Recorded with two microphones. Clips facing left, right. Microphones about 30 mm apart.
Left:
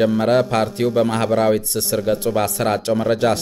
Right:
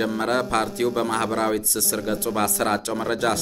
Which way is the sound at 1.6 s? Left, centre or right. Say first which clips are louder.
Left 3 dB; left.